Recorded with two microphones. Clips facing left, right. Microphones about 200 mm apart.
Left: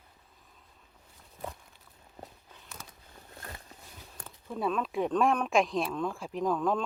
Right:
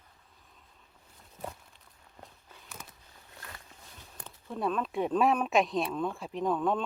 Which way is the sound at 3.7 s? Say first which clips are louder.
Left 3 dB; 40° left (ahead or behind).